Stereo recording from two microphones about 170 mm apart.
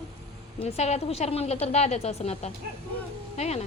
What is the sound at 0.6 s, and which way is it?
A woman's voice, 40° left (ahead or behind).